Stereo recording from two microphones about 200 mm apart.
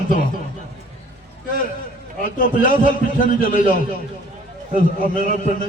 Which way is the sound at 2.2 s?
45° left (ahead or behind).